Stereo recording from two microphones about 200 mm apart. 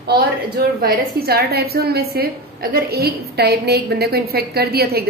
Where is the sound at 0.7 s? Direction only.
50° right (ahead or behind).